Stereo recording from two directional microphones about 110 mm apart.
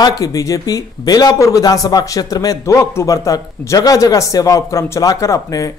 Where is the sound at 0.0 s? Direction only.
35° left (ahead or behind).